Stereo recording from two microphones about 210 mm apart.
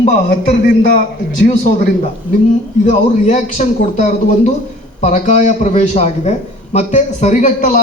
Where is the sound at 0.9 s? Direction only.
55° left (ahead or behind).